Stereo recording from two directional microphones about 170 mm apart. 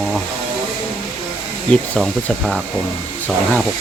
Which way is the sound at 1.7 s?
5° left (ahead or behind).